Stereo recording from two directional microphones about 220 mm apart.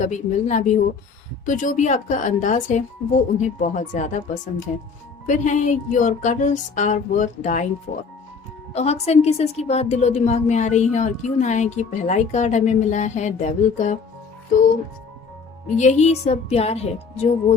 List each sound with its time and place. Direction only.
0.0 s a woman's voice: 35° left (ahead or behind)
8.7 s a woman's voice: 30° left (ahead or behind)
15.7 s speech: 35° left (ahead or behind)